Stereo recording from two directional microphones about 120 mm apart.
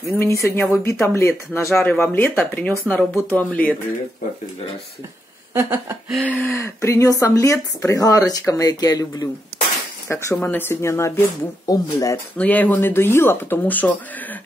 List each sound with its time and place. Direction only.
0.1 s speech: 20° left (ahead or behind)
5.5 s a sound: 20° right (ahead or behind)
6.2 s speech: 15° left (ahead or behind)
12.4 s speech: 15° left (ahead or behind)